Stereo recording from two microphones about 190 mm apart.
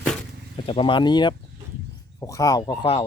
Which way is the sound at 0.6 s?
25° left (ahead or behind).